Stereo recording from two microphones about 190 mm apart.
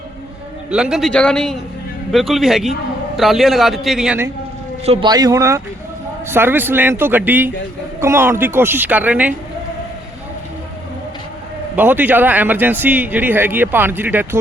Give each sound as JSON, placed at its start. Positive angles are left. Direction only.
{"t": 0.7, "sound": "a man's voice", "side_deg": -5}
{"t": 4.9, "sound": "a man's voice", "side_deg": -25}
{"t": 11.8, "sound": "a man's voice", "side_deg": -10}